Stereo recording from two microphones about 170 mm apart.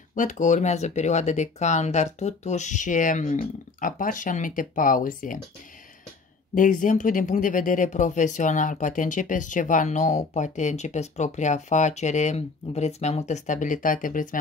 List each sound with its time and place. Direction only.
0.1 s speech: 50° left (ahead or behind)
6.5 s speech: 50° left (ahead or behind)